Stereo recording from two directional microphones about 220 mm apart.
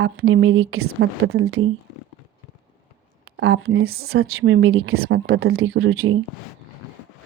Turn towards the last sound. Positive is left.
turn(degrees=-70)  # may be behind; listen again after turning